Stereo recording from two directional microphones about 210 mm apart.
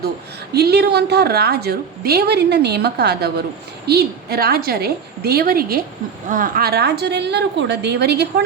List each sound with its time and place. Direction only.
0.5 s a woman's voice: 50° right (ahead or behind)